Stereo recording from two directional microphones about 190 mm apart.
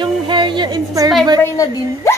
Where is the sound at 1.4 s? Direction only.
15° left (ahead or behind).